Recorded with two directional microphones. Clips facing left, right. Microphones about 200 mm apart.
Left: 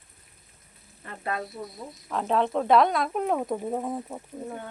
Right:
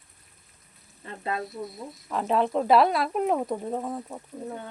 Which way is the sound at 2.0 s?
Centre (ahead or behind).